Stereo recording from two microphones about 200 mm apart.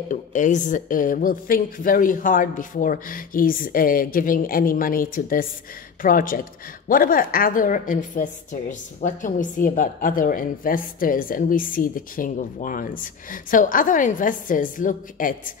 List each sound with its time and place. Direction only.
0.1 s a woman's voice: 40° left (ahead or behind)